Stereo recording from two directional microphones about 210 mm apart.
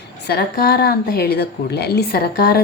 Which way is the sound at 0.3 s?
45° left (ahead or behind).